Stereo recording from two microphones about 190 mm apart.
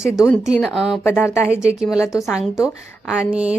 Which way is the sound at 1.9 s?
15° left (ahead or behind).